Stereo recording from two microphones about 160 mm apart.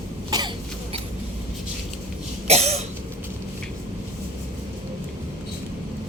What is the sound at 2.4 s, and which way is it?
Cough, 40° right (ahead or behind).